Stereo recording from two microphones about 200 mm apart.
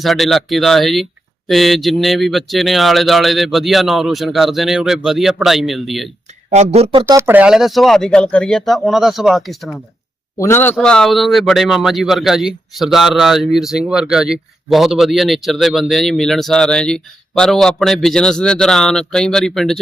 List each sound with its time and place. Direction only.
0.0 s speech: centre (ahead or behind)
6.5 s speech: 30° right (ahead or behind)
7.0 s speech: 10° right (ahead or behind)
10.3 s speech: 15° left (ahead or behind)